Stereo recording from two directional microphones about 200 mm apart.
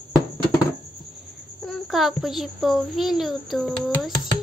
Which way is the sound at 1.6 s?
Centre (ahead or behind).